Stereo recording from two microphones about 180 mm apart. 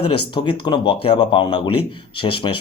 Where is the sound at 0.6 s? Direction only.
25° left (ahead or behind).